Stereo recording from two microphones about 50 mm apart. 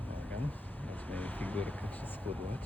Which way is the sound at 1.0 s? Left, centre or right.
Left.